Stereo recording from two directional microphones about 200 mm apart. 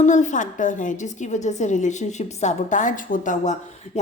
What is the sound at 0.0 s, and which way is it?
A woman's voice, 35° left (ahead or behind).